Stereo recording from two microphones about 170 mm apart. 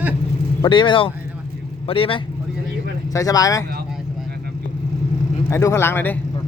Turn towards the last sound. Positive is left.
turn(degrees=15)  # may be behind; listen again after turning